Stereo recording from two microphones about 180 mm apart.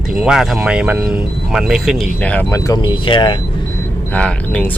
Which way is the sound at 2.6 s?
20° left (ahead or behind).